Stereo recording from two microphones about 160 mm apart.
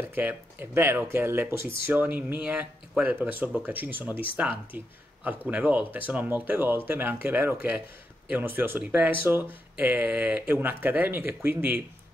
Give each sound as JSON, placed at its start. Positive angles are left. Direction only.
{"t": 0.0, "sound": "speech", "side_deg": -10}
{"t": 1.6, "sound": "speech", "side_deg": 70}
{"t": 1.9, "sound": "speech", "side_deg": -10}